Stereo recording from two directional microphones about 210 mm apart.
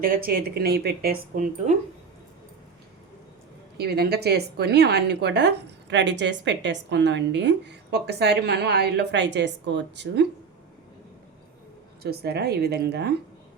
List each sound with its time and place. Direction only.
0.0 s a woman's voice: 45° right (ahead or behind)
3.8 s a woman's voice: 50° right (ahead or behind)
12.0 s a woman's voice: 50° right (ahead or behind)